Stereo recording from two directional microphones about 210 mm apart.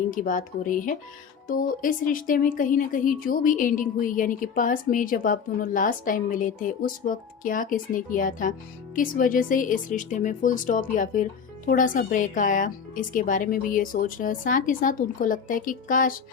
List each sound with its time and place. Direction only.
0.1 s a woman's voice: 40° left (ahead or behind)